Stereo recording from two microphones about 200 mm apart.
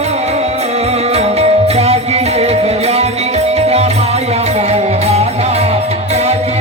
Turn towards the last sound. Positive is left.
turn(degrees=-30)  # may be behind; listen again after turning